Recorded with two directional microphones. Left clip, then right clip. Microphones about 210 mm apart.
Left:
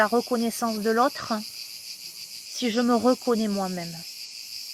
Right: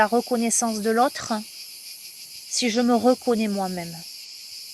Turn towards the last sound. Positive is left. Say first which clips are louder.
# right 2 dB
turn(degrees=-35)  # may be behind; listen again after turning